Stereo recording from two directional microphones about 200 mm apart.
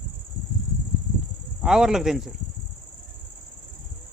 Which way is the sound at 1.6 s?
Centre (ahead or behind).